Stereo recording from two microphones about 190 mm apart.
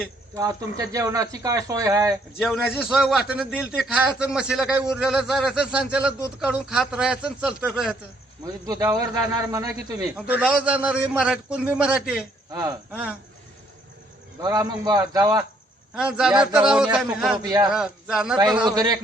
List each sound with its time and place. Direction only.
0.3 s a man's voice: 20° right (ahead or behind)
2.4 s a man's voice: centre (ahead or behind)
8.6 s a man's voice: 20° right (ahead or behind)
10.2 s a man's voice: 5° right (ahead or behind)
12.5 s speech: 20° right (ahead or behind)
12.9 s a man's voice: 5° right (ahead or behind)
14.4 s a man's voice: 20° right (ahead or behind)
16.0 s a man's voice: 5° right (ahead or behind)
17.3 s a man's voice: 20° right (ahead or behind)
17.7 s a man's voice: 5° right (ahead or behind)
18.7 s a man's voice: 20° right (ahead or behind)